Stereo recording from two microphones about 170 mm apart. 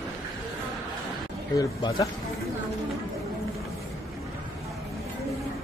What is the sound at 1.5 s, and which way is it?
Speech, 20° left (ahead or behind).